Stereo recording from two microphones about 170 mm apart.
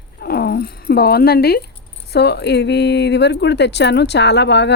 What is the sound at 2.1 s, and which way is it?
Speech, 80° left.